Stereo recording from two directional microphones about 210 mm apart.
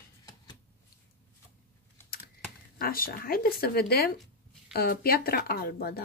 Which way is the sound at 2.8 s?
45° left (ahead or behind).